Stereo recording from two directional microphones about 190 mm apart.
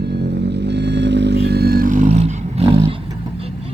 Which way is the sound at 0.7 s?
65° right (ahead or behind).